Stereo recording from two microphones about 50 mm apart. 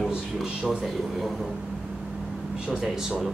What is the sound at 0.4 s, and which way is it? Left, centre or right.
A man's voice, centre.